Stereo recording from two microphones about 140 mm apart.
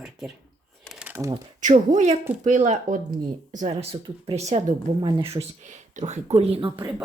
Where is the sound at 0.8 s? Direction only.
5° right (ahead or behind).